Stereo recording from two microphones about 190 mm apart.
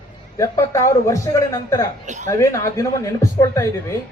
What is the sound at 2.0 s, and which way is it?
Speech, 40° right (ahead or behind).